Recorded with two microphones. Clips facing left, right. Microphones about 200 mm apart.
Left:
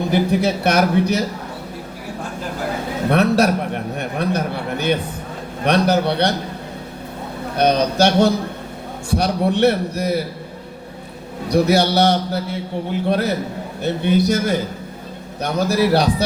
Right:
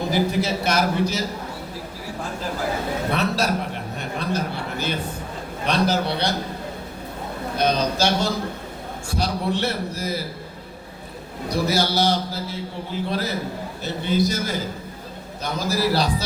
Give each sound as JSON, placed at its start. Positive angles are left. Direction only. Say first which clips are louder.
{"t": 0.1, "sound": "a man's voice", "louder": "left 5 dB", "side_deg": 60}
{"t": 3.1, "sound": "a man's voice", "louder": "left 9 dB", "side_deg": 60}
{"t": 7.5, "sound": "a man's voice", "louder": "left 5 dB", "side_deg": 60}
{"t": 11.5, "sound": "a man's voice", "louder": "left 7 dB", "side_deg": 65}